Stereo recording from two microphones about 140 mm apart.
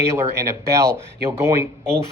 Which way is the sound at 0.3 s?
20° right (ahead or behind).